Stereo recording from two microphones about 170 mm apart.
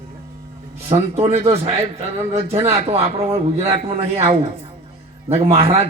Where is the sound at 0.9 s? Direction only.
35° right (ahead or behind).